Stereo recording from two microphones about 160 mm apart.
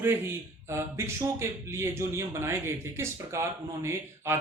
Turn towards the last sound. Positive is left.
turn(degrees=-15)  # may be behind; listen again after turning